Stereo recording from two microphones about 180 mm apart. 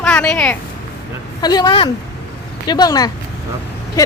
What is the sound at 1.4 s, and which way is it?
Speech, 20° left (ahead or behind).